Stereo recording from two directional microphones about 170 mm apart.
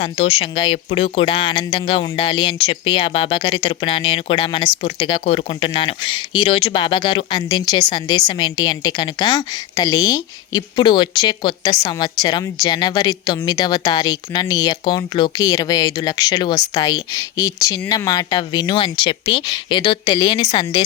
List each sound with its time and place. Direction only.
0.0 s speech: 35° left (ahead or behind)